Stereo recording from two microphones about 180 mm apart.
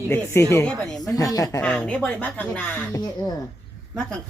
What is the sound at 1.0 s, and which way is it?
Speech, 20° left (ahead or behind).